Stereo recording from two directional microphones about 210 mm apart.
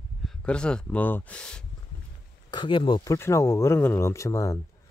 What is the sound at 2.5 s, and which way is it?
Speech, 20° left (ahead or behind).